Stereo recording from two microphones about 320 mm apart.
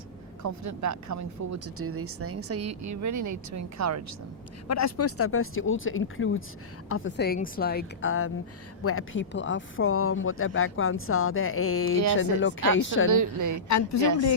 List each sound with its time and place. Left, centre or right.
0.4 s speech: right
4.7 s a woman's voice: left
13.1 s a woman's voice: right
13.7 s a woman's voice: left